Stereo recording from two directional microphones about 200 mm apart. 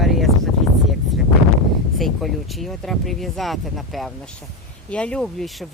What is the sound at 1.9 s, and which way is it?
Speech, centre (ahead or behind).